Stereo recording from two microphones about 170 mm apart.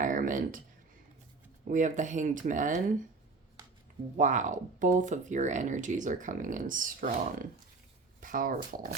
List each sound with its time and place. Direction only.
0.0 s a sound: 50° right (ahead or behind)
1.6 s speech: 45° right (ahead or behind)
4.2 s speech: 50° right (ahead or behind)